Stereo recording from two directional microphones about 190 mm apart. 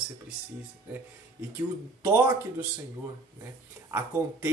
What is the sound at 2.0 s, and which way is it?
Speech, 15° right (ahead or behind).